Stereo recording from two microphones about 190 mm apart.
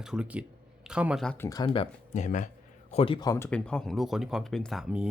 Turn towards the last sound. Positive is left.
turn(degrees=-5)  # may be behind; listen again after turning